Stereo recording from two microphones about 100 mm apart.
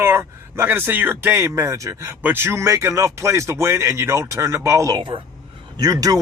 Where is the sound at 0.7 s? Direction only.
20° right (ahead or behind).